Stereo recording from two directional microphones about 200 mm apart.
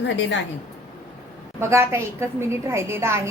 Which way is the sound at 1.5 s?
10° right (ahead or behind).